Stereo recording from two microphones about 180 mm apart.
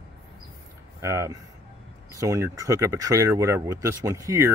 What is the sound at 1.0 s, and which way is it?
Speech, 15° right (ahead or behind).